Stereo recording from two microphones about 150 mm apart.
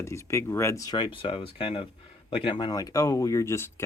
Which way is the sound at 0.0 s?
20° left (ahead or behind).